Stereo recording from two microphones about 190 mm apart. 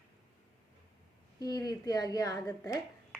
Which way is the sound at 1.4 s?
20° left (ahead or behind).